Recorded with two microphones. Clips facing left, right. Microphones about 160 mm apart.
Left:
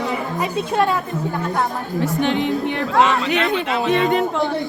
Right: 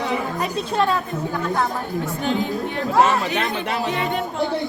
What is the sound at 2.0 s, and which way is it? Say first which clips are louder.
A woman's voice: left 5 dB; 85° left.